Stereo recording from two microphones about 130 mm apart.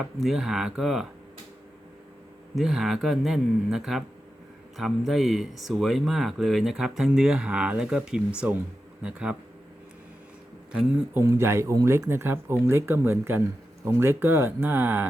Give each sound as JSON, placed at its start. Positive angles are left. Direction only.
{"t": 0.0, "sound": "speech", "side_deg": 0}
{"t": 2.6, "sound": "speech", "side_deg": 0}
{"t": 10.7, "sound": "speech", "side_deg": -5}
{"t": 11.2, "sound": "speech", "side_deg": -20}